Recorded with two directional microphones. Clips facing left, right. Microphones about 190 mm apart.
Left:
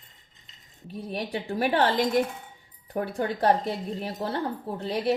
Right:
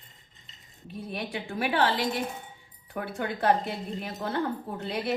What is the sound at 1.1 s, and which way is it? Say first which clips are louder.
Speech: left 4 dB; 35° left (ahead or behind).